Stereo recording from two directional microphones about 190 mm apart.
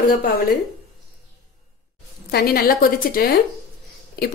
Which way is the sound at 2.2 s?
55° left (ahead or behind).